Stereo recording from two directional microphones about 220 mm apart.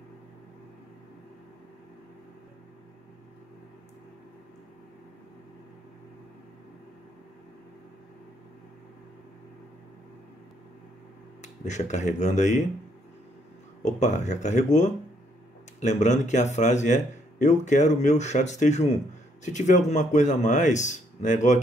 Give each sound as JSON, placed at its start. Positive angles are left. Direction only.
{"t": 11.4, "sound": "speech", "side_deg": 30}
{"t": 13.8, "sound": "speech", "side_deg": 35}